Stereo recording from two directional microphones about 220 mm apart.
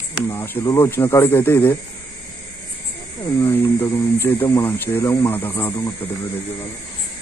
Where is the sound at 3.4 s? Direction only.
10° left (ahead or behind).